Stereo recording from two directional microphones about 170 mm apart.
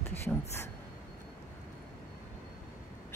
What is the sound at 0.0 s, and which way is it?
Speech, 10° left (ahead or behind).